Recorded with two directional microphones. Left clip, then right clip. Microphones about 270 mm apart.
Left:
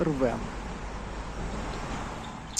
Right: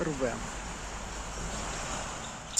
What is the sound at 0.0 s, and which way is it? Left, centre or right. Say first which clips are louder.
Speech: left 5 dB; centre.